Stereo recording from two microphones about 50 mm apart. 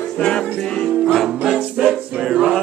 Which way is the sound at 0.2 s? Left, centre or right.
Centre.